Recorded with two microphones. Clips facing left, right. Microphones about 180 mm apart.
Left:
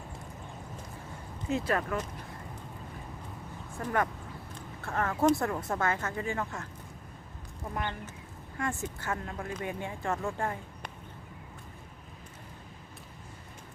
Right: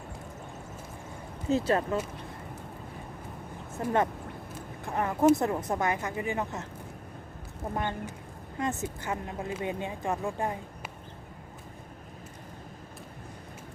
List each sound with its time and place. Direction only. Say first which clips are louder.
1.5 s speech: right 4 dB; 30° right (ahead or behind)
3.8 s speech: right 3 dB; 20° right (ahead or behind)
7.7 s speech: right 3 dB; 20° right (ahead or behind)